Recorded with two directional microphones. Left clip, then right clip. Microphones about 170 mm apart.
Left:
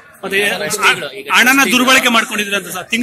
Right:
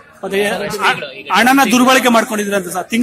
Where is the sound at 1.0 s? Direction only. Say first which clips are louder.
Left 2 dB; 40° left (ahead or behind).